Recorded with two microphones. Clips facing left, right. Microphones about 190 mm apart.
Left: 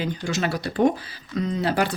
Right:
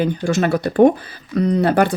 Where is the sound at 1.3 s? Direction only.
60° right (ahead or behind).